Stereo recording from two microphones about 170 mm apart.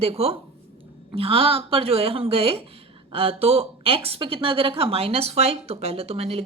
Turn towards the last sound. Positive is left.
turn(degrees=-35)  # may be behind; listen again after turning